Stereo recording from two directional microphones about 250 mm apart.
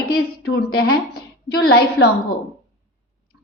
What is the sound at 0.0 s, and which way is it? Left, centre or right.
A woman's voice, left.